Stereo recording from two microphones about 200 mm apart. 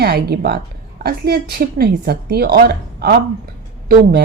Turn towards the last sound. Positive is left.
turn(degrees=-50)  # may be behind; listen again after turning